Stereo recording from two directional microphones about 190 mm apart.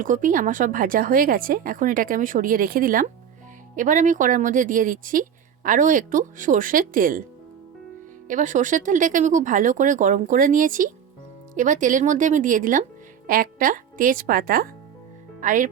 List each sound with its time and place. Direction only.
0.0 s a woman's voice: 45° right (ahead or behind)
8.3 s a woman's voice: 40° right (ahead or behind)